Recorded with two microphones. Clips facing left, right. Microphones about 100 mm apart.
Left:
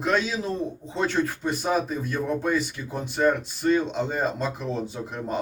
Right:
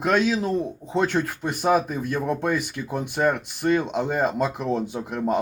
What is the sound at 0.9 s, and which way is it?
Speech, 55° right (ahead or behind).